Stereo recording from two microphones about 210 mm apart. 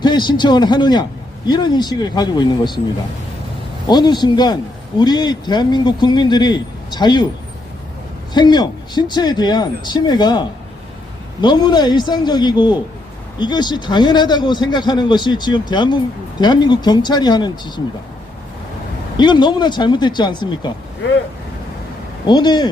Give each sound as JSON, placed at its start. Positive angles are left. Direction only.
{"t": 0.0, "sound": "a man's voice", "side_deg": 20}
{"t": 3.8, "sound": "a man's voice", "side_deg": 20}
{"t": 8.3, "sound": "a man's voice", "side_deg": 20}
{"t": 19.1, "sound": "a man's voice", "side_deg": 20}
{"t": 22.3, "sound": "a man's voice", "side_deg": 20}